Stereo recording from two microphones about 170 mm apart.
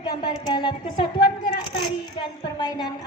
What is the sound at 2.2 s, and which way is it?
Speech, 25° left (ahead or behind).